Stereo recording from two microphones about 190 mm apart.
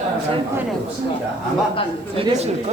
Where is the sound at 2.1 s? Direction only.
30° right (ahead or behind).